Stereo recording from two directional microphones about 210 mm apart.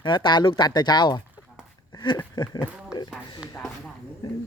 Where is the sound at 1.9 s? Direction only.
20° left (ahead or behind).